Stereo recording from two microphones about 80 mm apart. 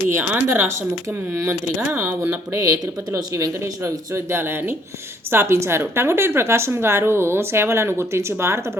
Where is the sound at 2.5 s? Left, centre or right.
Right.